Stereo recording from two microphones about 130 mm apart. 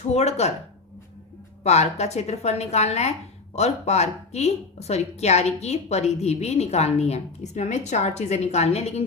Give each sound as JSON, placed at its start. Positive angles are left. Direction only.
{"t": 0.1, "sound": "a woman's voice", "side_deg": 55}
{"t": 1.6, "sound": "a woman's voice", "side_deg": 55}